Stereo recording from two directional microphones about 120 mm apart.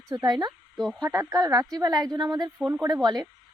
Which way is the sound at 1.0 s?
25° right (ahead or behind).